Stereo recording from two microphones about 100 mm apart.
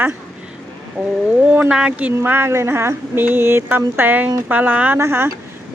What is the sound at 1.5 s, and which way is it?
Speech, 15° right (ahead or behind).